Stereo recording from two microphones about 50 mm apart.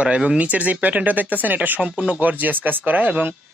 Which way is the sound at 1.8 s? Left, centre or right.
Right.